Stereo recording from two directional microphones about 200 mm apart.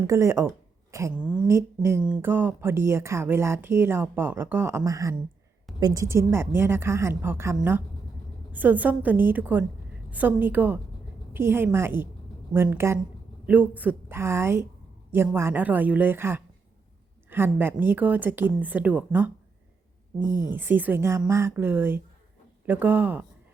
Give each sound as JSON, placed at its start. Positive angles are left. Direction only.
{"t": 0.0, "sound": "speech", "side_deg": -15}
{"t": 20.1, "sound": "speech", "side_deg": 20}
{"t": 20.6, "sound": "speech", "side_deg": -10}